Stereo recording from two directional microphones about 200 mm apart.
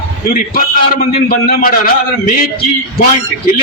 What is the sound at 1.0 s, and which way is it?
Speech, 45° left (ahead or behind).